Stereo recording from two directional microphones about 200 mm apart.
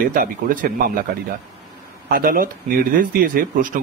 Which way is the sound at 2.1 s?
45° right (ahead or behind).